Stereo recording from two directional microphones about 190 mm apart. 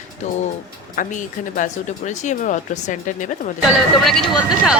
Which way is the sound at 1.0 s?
40° left (ahead or behind).